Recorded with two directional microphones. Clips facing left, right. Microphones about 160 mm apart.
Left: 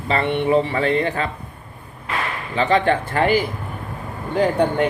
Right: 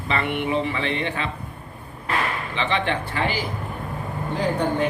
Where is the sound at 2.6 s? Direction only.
40° left (ahead or behind).